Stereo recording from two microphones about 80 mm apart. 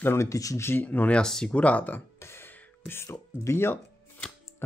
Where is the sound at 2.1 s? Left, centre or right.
Left.